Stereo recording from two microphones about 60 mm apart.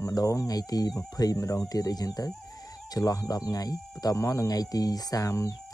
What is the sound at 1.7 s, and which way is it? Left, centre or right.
Speech, left.